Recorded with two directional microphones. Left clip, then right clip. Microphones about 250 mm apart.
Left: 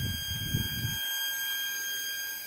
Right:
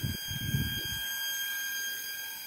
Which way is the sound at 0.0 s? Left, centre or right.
Left.